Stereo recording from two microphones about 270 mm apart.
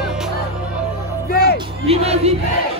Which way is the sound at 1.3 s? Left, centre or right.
Left.